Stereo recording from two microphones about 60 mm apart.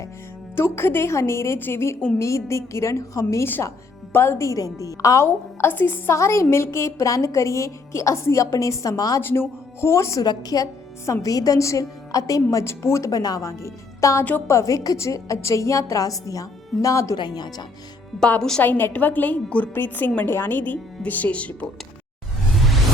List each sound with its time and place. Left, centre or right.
0.5 s a woman's voice: left
4.1 s a woman's voice: left
4.4 s a woman's voice: left
5.2 s a woman's voice: left
6.1 s a woman's voice: left
9.2 s a woman's voice: left
10.2 s a woman's voice: left
12.6 s a woman's voice: left
13.1 s a woman's voice: left
18.6 s a woman's voice: left
19.7 s a woman's voice: left
22.5 s music: centre